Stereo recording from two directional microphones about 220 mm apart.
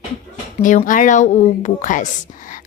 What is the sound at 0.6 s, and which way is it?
A woman's voice, 35° left (ahead or behind).